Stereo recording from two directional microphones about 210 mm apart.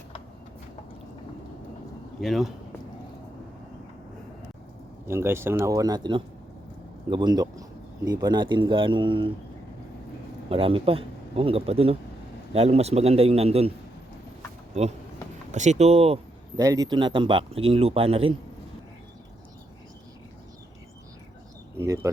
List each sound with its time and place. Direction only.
2.2 s speech: centre (ahead or behind)
5.0 s speech: 10° right (ahead or behind)
10.5 s speech: 25° right (ahead or behind)
15.5 s speech: 35° right (ahead or behind)
16.6 s speech: 15° right (ahead or behind)
21.8 s bird: 15° right (ahead or behind)